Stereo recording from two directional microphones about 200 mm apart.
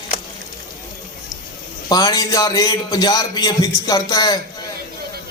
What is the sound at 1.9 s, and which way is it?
A man's voice, 20° left (ahead or behind).